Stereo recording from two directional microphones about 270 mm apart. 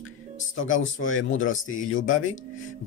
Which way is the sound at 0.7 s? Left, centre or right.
Left.